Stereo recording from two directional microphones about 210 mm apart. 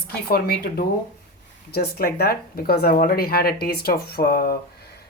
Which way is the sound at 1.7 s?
50° left (ahead or behind).